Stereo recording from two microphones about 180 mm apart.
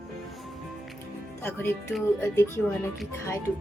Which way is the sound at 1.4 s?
10° left (ahead or behind).